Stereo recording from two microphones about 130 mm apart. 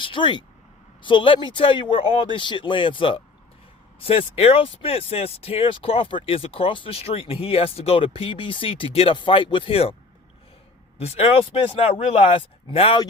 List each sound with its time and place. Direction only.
0.0 s speech: 40° left (ahead or behind)
10.9 s speech: 55° left (ahead or behind)